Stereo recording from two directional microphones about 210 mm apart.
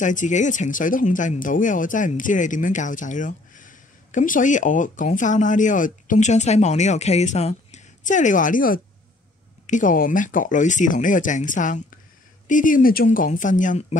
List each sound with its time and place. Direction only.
0.0 s speech: 35° left (ahead or behind)